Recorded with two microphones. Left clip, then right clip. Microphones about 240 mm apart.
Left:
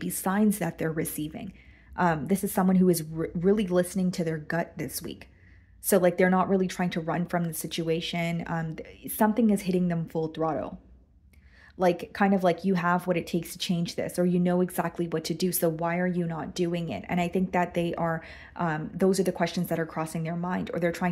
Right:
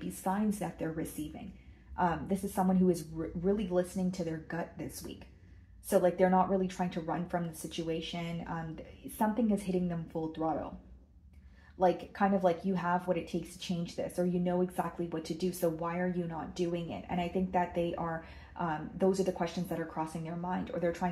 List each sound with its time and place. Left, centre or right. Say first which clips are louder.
0.0 s speech: left 7 dB; left
11.8 s speech: left 4 dB; left